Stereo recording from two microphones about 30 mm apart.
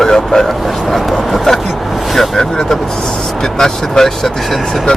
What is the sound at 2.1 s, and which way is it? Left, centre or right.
Speech, centre.